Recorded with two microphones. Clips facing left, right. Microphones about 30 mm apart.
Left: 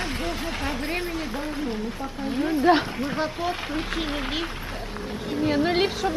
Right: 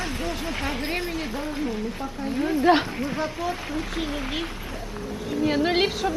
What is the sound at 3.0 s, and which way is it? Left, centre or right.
Speech, left.